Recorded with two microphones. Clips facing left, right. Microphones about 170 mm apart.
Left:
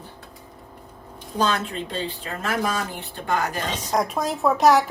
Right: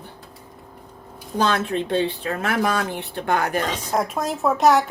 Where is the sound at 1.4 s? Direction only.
65° right (ahead or behind).